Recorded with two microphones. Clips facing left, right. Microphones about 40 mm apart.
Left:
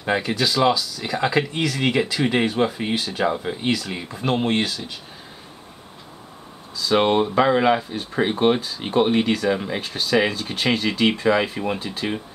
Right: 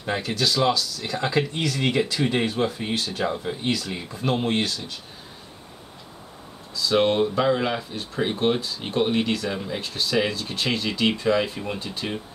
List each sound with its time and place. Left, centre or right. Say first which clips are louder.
0.1 s speech: left 3 dB; centre
6.8 s speech: left 2 dB; centre
9.8 s speech: left 4 dB; centre